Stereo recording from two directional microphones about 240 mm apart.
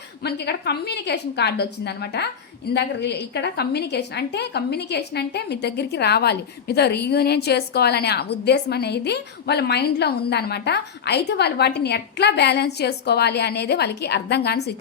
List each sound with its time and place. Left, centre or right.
0.2 s a woman's voice: left